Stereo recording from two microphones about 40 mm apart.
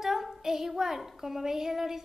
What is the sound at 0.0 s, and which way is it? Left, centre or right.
A woman's voice, centre.